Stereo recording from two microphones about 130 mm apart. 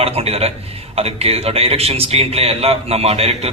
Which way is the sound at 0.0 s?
50° right (ahead or behind).